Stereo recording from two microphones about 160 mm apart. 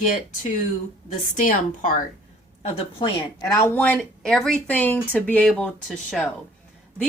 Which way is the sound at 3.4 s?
20° left (ahead or behind).